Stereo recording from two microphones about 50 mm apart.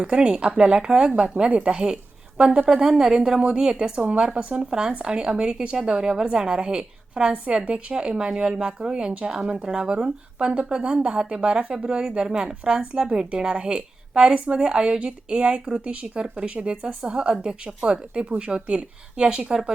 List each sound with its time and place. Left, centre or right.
0.0 s speech: centre
4.7 s speech: centre